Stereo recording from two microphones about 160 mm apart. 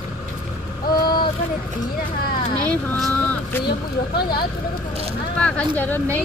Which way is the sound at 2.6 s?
10° left (ahead or behind).